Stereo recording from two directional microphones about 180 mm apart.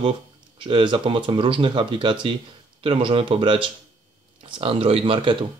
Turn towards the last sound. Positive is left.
turn(degrees=-30)  # may be behind; listen again after turning